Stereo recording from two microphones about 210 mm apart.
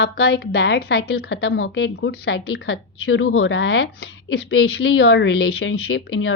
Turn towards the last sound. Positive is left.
turn(degrees=75)  # may be behind; listen again after turning